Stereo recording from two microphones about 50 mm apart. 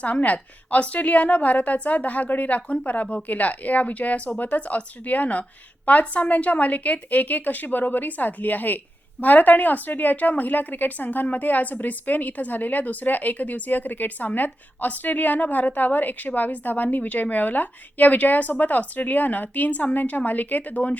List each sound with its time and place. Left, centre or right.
0.0 s a woman's voice: left